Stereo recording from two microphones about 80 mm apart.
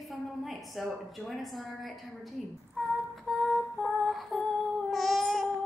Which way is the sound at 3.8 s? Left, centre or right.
Centre.